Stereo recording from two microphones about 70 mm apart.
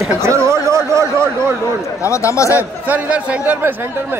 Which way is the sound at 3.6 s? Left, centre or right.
Right.